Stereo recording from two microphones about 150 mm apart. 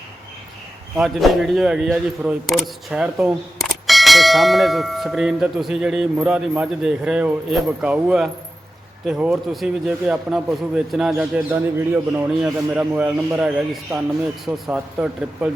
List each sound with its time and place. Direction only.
0.9 s speech: centre (ahead or behind)
11.1 s a man's voice: 15° right (ahead or behind)
12.4 s a man's voice: 5° right (ahead or behind)